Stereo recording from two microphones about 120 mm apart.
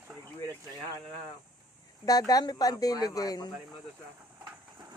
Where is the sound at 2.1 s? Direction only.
30° left (ahead or behind).